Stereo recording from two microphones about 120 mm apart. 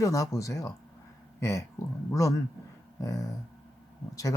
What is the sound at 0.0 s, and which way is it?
Speech, 25° left (ahead or behind).